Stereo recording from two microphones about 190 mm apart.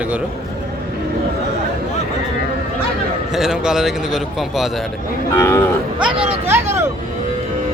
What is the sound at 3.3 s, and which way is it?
Speech, 5° right (ahead or behind).